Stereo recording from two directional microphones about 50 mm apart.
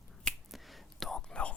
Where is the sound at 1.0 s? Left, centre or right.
Centre.